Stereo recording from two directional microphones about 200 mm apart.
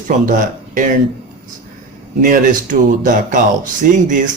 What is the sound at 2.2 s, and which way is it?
Speech, 40° right (ahead or behind).